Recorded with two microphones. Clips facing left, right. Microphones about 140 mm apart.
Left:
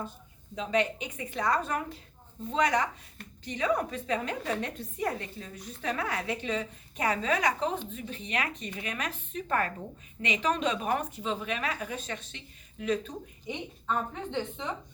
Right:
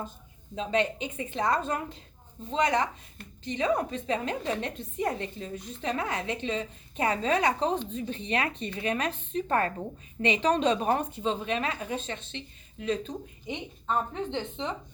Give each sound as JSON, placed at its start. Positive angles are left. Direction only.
{"t": 0.5, "sound": "a woman's voice", "side_deg": -30}